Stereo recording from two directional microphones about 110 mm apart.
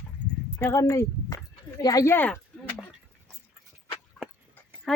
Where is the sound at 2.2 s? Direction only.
15° left (ahead or behind).